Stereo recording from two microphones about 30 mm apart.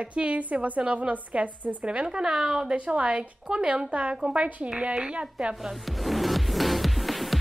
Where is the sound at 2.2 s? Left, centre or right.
Centre.